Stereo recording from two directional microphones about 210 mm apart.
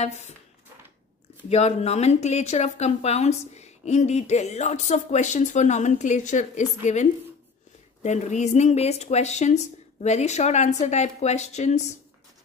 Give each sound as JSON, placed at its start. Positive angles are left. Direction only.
{"t": 0.0, "sound": "speech", "side_deg": 30}
{"t": 1.5, "sound": "speech", "side_deg": 30}